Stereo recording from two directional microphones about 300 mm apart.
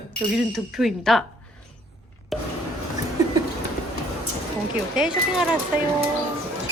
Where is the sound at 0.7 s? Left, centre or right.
Centre.